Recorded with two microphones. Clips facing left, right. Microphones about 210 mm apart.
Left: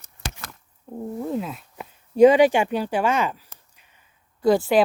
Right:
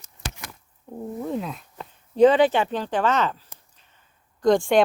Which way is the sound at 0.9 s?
Centre (ahead or behind).